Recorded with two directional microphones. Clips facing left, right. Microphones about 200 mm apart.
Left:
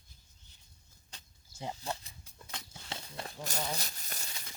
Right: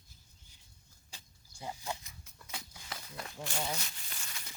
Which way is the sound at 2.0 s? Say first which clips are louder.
Left 2 dB; 30° left (ahead or behind).